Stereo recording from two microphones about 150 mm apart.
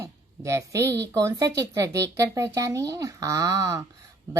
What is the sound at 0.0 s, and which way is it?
Speech, 20° right (ahead or behind).